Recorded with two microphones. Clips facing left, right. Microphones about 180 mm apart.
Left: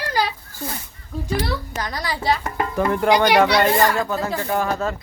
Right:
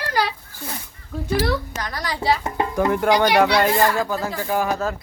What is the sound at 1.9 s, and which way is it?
Speech, 15° left (ahead or behind).